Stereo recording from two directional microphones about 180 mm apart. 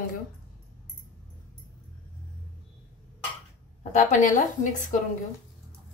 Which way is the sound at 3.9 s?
45° left (ahead or behind).